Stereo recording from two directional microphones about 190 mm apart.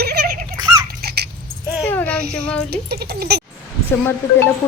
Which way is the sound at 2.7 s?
55° right (ahead or behind).